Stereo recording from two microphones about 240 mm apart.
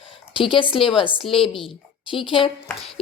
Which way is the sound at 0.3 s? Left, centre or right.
Left.